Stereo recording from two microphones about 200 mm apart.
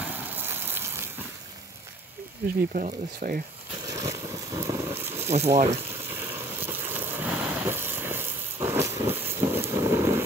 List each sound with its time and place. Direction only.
0.0 s fire: 10° right (ahead or behind)
2.7 s speech: 40° right (ahead or behind)
3.9 s a sound: 15° right (ahead or behind)
5.3 s speech: 35° right (ahead or behind)
6.0 s vehicle: 10° right (ahead or behind)